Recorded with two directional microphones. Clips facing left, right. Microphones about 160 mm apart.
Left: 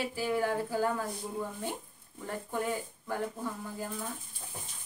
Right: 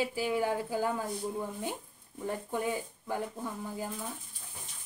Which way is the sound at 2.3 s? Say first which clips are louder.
Right 1 dB; 15° right (ahead or behind).